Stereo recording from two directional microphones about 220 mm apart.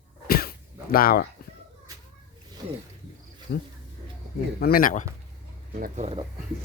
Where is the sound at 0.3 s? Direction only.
40° left (ahead or behind).